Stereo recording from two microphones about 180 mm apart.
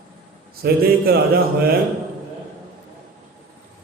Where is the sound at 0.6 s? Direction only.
60° right (ahead or behind).